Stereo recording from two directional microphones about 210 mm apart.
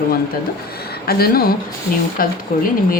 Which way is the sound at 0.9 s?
45° left (ahead or behind).